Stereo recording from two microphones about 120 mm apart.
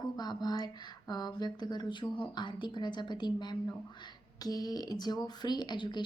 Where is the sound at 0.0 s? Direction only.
35° left (ahead or behind).